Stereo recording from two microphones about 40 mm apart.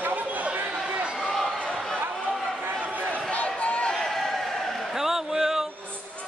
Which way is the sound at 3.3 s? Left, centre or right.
Left.